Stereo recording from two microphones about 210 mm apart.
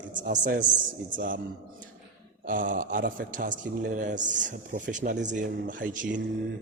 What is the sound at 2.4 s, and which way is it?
Speech, 40° right (ahead or behind).